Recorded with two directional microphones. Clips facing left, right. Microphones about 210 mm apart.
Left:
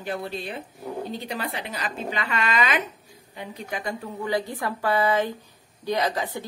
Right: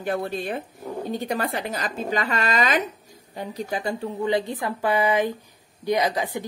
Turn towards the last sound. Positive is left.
turn(degrees=-15)  # may be behind; listen again after turning